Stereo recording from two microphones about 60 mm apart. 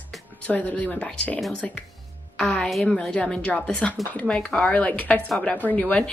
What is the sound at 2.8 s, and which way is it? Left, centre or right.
A woman's voice, centre.